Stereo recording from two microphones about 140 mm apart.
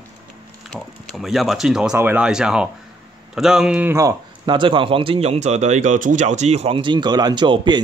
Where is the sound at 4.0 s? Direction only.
30° right (ahead or behind).